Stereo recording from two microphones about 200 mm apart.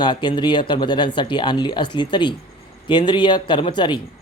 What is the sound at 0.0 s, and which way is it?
Speech, 20° left (ahead or behind).